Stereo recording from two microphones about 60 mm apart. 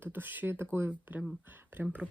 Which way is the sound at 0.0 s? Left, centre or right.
Right.